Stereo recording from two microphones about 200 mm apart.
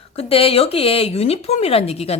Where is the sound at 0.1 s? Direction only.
30° left (ahead or behind).